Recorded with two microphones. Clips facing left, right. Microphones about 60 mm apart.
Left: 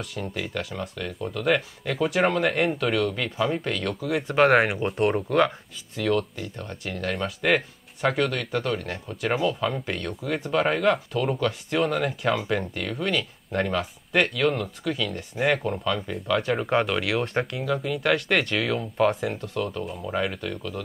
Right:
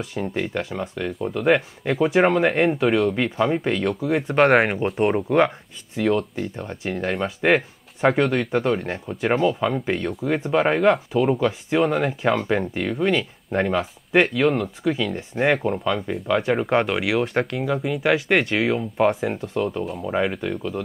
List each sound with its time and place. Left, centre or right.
0.1 s speech: right
1.9 s speech: centre
2.1 s speech: right
5.9 s speech: right
6.5 s speech: centre
6.8 s speech: right; by 20.1 s centre
20.1 s speech: centre